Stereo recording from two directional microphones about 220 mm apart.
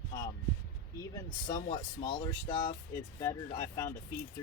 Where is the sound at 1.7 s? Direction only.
20° left (ahead or behind).